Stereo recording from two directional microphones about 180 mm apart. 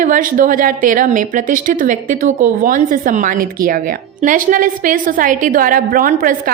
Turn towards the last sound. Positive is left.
turn(degrees=-50)  # may be behind; listen again after turning